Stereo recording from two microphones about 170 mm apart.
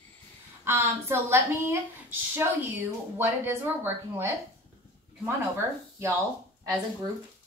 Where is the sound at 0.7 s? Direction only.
15° right (ahead or behind).